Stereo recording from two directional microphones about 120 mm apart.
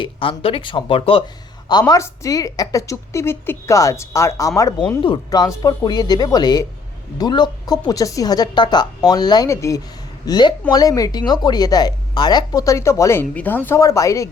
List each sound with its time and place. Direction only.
0.0 s speech: 50° left (ahead or behind)
1.9 s a woman's voice: 30° left (ahead or behind)
10.2 s a woman's voice: 35° left (ahead or behind)